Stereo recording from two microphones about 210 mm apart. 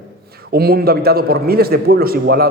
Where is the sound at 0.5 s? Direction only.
45° right (ahead or behind).